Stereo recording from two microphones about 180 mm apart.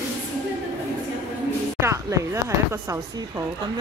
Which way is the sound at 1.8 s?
15° right (ahead or behind).